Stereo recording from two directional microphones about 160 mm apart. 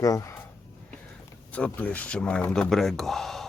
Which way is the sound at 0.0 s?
20° left (ahead or behind).